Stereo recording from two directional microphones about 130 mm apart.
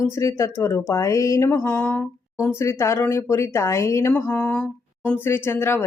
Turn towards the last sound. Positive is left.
turn(degrees=20)  # may be behind; listen again after turning